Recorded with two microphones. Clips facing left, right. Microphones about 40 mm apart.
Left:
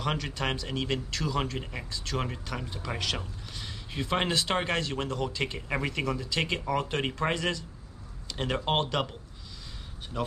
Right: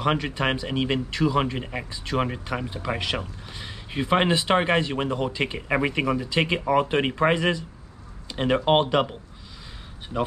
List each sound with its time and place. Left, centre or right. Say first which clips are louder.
0.0 s speech: right 7 dB; right